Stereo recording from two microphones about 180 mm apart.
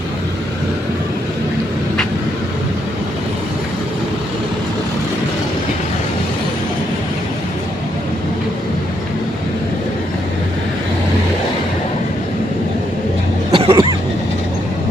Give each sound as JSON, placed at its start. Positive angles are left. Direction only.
{"t": 13.5, "sound": "cough", "side_deg": -30}